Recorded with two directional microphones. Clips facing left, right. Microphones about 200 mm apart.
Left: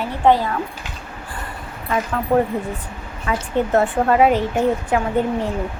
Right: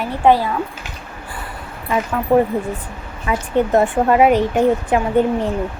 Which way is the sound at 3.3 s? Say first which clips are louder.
Right 3 dB; 20° right (ahead or behind).